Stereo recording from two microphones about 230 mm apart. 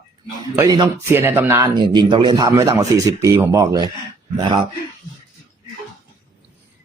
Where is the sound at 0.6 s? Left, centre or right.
Centre.